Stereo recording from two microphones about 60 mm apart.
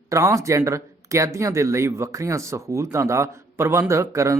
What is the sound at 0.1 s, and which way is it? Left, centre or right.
Speech, right.